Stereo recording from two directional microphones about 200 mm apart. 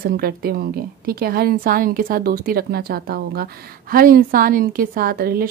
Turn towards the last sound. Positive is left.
turn(degrees=-50)  # may be behind; listen again after turning